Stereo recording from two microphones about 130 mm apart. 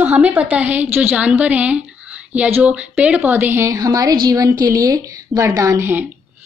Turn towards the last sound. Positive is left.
turn(degrees=-15)  # may be behind; listen again after turning